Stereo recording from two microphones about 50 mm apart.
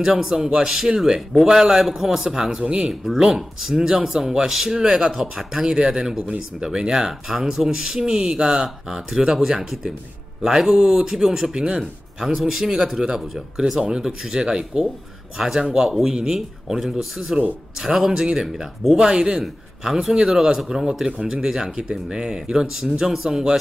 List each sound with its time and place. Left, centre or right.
0.0 s a man's voice: centre
8.6 s a man's voice: centre